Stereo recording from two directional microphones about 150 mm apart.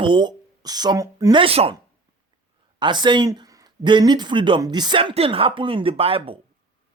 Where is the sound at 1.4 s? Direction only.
40° right (ahead or behind).